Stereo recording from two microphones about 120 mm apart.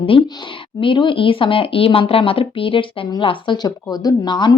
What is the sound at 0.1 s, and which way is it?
Speech, 50° left (ahead or behind).